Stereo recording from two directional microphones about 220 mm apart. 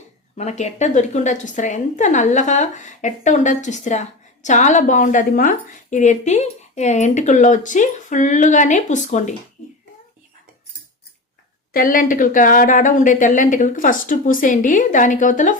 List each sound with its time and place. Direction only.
0.3 s a woman's voice: 30° left (ahead or behind)
11.7 s a woman's voice: 40° left (ahead or behind)